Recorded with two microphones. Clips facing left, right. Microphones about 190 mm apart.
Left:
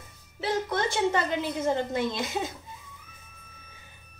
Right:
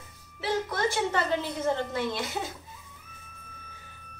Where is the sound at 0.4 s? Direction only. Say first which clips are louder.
Left 1 dB; 20° left (ahead or behind).